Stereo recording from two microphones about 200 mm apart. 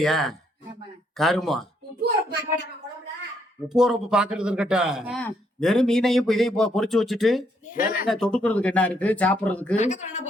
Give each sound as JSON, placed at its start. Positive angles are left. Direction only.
{"t": 0.0, "sound": "speech", "side_deg": 0}
{"t": 3.7, "sound": "speech", "side_deg": -5}
{"t": 7.7, "sound": "speech", "side_deg": 45}
{"t": 8.0, "sound": "speech", "side_deg": 0}
{"t": 9.7, "sound": "speech", "side_deg": 35}